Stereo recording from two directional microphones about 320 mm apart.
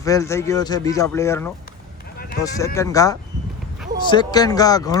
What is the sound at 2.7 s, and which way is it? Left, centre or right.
Speech, centre.